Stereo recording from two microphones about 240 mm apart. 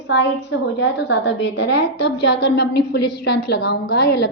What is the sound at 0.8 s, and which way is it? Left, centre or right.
A woman's voice, left.